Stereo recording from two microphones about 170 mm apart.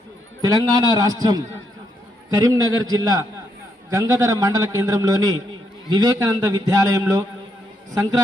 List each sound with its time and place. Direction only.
0.4 s a man's voice: 20° right (ahead or behind)